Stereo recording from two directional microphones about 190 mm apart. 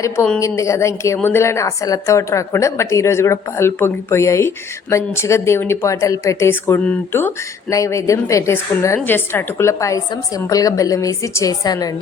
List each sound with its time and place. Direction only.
0.3 s a woman's voice: 15° left (ahead or behind)